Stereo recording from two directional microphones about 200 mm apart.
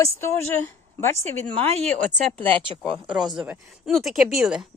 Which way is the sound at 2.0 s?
35° right (ahead or behind).